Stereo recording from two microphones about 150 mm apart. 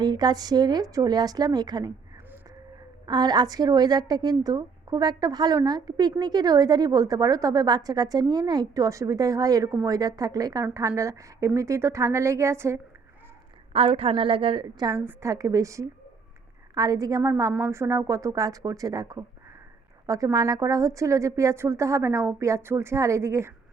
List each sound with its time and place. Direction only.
0.0 s a woman's voice: 30° right (ahead or behind)
3.1 s a woman's voice: 30° right (ahead or behind)
13.7 s a woman's voice: 40° right (ahead or behind); by 23.6 s 20° right (ahead or behind)